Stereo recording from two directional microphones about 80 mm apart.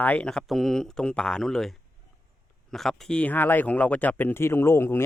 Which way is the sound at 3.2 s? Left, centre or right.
Left.